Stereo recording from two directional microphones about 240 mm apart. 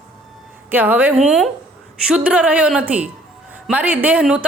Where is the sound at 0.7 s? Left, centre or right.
Centre.